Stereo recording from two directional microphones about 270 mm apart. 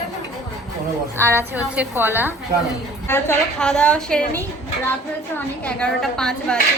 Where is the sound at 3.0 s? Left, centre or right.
Centre.